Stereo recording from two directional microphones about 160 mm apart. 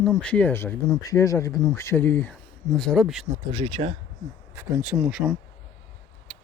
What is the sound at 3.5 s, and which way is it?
Speech, 35° right (ahead or behind).